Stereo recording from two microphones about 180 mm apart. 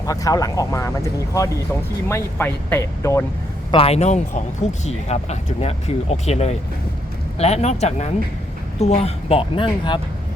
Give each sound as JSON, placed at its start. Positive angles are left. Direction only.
{"t": 0.0, "sound": "speech", "side_deg": 20}
{"t": 3.7, "sound": "speech", "side_deg": 30}